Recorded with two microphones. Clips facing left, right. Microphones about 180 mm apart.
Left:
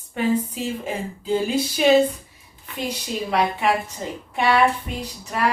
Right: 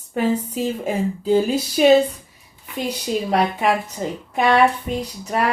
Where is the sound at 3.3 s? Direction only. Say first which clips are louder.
Right 1 dB; 40° right (ahead or behind).